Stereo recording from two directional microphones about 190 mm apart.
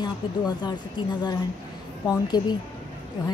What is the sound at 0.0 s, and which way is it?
A woman's voice, 20° left (ahead or behind).